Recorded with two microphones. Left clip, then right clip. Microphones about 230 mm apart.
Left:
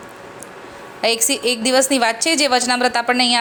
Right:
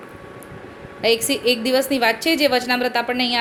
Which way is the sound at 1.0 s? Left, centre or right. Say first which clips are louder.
Even; left.